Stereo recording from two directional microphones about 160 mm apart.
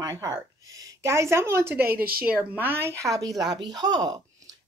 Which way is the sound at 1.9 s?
70° right (ahead or behind).